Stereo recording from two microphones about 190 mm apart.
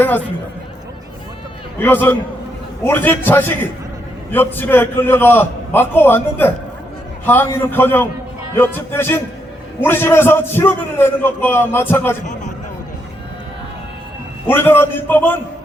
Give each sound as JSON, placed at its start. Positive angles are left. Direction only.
{"t": 1.8, "sound": "a man's voice", "side_deg": 10}
{"t": 12.2, "sound": "speech", "side_deg": 40}
{"t": 14.4, "sound": "a man's voice", "side_deg": 10}